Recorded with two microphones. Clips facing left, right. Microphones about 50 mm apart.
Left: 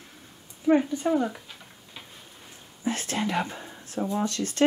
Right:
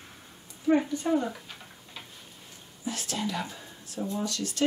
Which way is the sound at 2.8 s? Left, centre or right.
Left.